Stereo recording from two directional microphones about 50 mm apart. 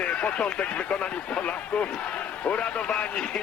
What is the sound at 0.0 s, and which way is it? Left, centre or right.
A man's voice, left.